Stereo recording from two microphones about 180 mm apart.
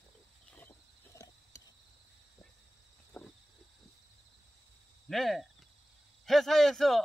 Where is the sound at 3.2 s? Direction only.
5° left (ahead or behind).